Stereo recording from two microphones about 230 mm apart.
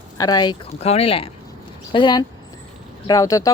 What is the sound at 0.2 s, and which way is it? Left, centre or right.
Speech, centre.